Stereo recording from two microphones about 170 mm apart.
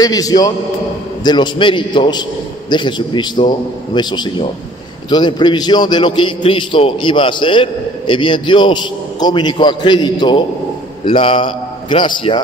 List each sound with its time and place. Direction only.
0.0 s a man's voice: 20° left (ahead or behind)